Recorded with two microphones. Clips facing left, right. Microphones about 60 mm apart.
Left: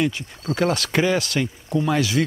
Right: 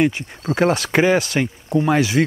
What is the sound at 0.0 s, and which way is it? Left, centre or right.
Speech, right.